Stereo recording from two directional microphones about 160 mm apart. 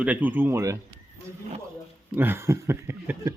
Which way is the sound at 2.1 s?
15° right (ahead or behind).